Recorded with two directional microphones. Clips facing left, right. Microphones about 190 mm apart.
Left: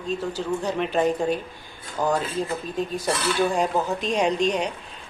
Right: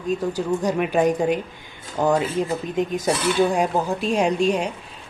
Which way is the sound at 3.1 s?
15° right (ahead or behind).